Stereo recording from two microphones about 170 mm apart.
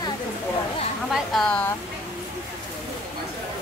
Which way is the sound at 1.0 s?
Centre (ahead or behind).